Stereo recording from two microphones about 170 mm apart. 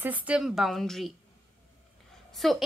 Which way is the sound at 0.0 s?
10° right (ahead or behind).